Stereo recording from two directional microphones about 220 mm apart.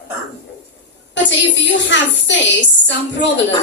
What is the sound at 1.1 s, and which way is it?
A woman's voice, 55° left (ahead or behind).